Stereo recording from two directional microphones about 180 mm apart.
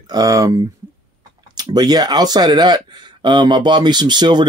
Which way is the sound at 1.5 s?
20° right (ahead or behind).